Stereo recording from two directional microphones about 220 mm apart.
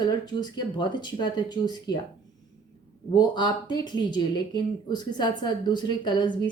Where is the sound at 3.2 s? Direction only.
20° left (ahead or behind).